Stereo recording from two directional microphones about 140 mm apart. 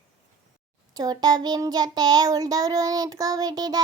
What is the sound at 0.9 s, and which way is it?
Child singing, 30° right (ahead or behind).